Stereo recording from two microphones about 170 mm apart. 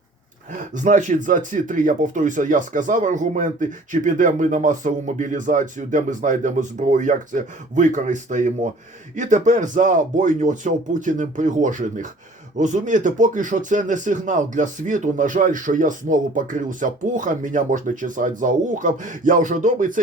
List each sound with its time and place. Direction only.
0.7 s speech: 50° right (ahead or behind)